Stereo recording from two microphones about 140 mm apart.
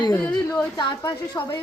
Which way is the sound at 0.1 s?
10° left (ahead or behind).